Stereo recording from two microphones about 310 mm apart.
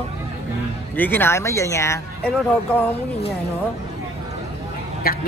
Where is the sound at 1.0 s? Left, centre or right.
Centre.